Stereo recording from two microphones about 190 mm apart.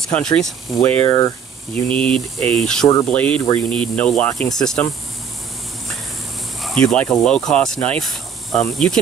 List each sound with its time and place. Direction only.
0.1 s speech: 5° left (ahead or behind)
1.0 s speech: 20° left (ahead or behind)
1.9 s speech: 5° left (ahead or behind)
6.6 s speech: 5° left (ahead or behind)